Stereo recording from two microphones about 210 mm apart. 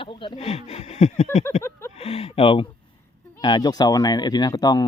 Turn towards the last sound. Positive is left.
turn(degrees=20)  # may be behind; listen again after turning